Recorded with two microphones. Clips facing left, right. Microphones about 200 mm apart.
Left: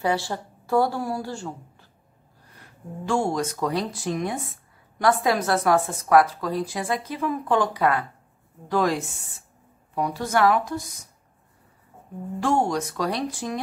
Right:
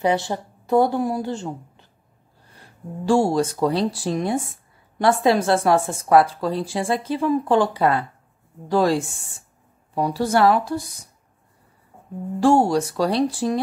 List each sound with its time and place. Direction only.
0.0 s a woman's voice: 20° right (ahead or behind)
2.5 s speech: 30° right (ahead or behind)
12.4 s speech: 30° right (ahead or behind)